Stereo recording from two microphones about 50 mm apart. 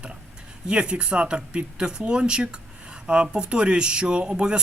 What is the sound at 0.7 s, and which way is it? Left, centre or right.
Speech, centre.